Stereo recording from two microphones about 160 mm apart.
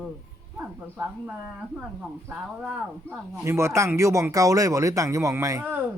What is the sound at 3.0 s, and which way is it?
Speech, 15° right (ahead or behind).